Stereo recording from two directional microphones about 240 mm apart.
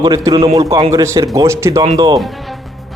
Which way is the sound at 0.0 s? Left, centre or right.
Centre.